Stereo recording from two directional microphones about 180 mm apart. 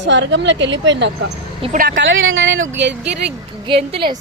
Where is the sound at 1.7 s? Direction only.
50° right (ahead or behind).